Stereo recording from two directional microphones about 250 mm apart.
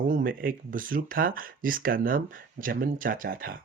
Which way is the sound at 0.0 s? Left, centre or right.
Right.